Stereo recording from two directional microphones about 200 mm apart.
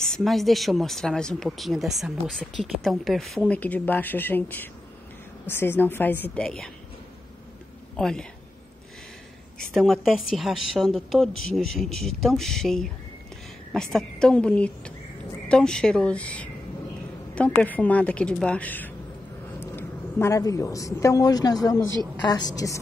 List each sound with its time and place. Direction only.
0.0 s a woman's voice: centre (ahead or behind)
7.9 s speech: 5° left (ahead or behind)
9.8 s a woman's voice: centre (ahead or behind); by 22.8 s 20° left (ahead or behind)